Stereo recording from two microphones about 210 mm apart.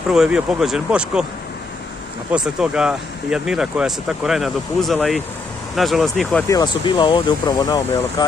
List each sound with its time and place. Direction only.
0.1 s speech: 5° right (ahead or behind)
2.3 s speech: 5° right (ahead or behind)
6.5 s speech: 20° left (ahead or behind)